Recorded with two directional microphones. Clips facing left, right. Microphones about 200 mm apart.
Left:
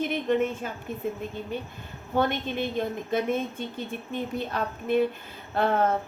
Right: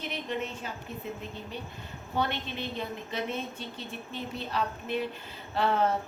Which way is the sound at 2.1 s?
50° left (ahead or behind).